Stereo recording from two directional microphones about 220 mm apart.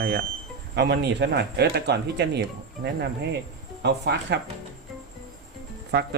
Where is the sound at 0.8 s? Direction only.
50° right (ahead or behind).